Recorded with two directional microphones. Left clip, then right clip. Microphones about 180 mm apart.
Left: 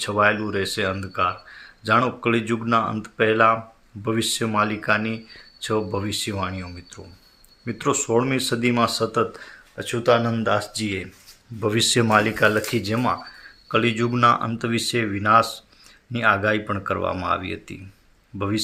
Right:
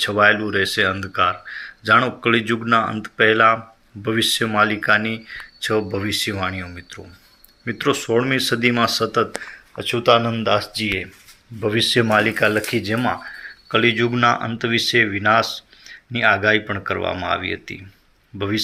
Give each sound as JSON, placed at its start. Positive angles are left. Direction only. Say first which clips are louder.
{"t": 0.0, "sound": "speech", "louder": "right 4 dB", "side_deg": 0}